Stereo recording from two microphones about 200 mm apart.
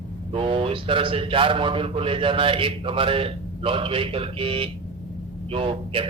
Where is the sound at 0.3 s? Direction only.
25° right (ahead or behind).